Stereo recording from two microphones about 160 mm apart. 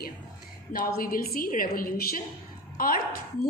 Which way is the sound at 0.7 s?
65° left (ahead or behind).